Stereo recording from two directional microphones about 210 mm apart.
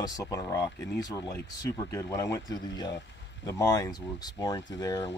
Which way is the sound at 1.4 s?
15° left (ahead or behind).